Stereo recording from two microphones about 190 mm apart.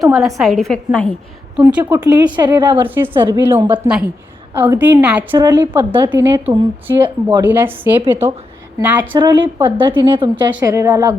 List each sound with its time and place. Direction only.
0.1 s a woman's voice: centre (ahead or behind)
1.8 s a woman's voice: 20° right (ahead or behind)
2.8 s a woman's voice: 10° right (ahead or behind)
3.2 s a woman's voice: 25° right (ahead or behind)
3.4 s a woman's voice: 10° right (ahead or behind)
9.1 s a woman's voice: 20° right (ahead or behind)